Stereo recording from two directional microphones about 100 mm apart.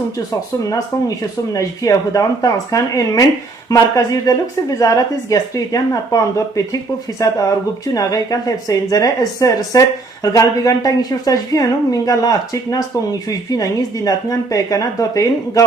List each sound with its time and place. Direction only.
0.7 s speech: 35° left (ahead or behind)